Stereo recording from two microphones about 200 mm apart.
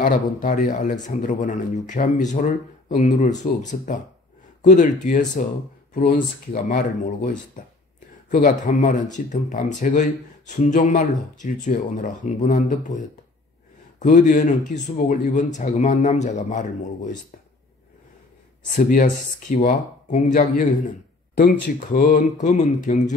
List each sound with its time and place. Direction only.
0.0 s speech: 40° left (ahead or behind)
18.8 s speech: 45° left (ahead or behind)
21.7 s speech: 40° left (ahead or behind)